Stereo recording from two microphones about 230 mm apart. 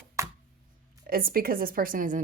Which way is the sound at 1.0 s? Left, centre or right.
Right.